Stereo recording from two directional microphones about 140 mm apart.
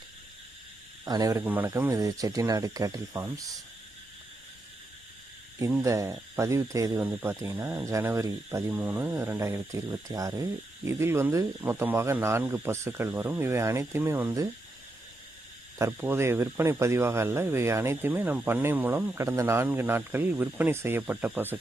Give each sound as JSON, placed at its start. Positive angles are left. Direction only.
{"t": 1.0, "sound": "speech", "side_deg": -25}
{"t": 5.8, "sound": "speech", "side_deg": -20}
{"t": 15.8, "sound": "speech", "side_deg": -20}